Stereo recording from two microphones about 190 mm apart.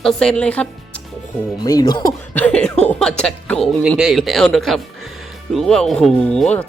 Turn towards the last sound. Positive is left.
turn(degrees=5)  # may be behind; listen again after turning